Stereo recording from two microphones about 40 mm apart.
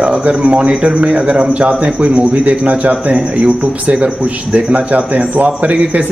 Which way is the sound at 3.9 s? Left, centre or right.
Right.